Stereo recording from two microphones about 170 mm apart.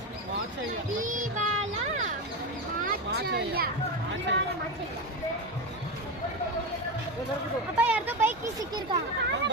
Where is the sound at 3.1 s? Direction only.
70° right (ahead or behind).